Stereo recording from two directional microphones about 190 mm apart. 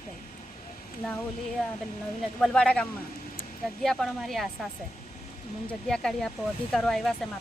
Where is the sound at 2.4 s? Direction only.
5° left (ahead or behind).